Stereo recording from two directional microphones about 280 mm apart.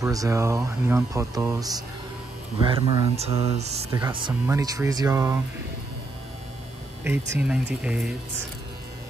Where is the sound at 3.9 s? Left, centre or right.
Centre.